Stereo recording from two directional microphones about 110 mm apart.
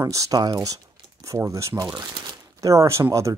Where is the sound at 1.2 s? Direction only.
25° right (ahead or behind).